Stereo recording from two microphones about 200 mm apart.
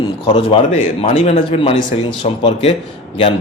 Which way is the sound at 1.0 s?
25° left (ahead or behind).